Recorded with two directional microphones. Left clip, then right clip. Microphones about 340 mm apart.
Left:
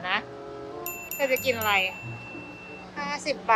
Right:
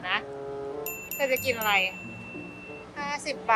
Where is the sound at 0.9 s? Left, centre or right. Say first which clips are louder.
Left 2 dB; centre.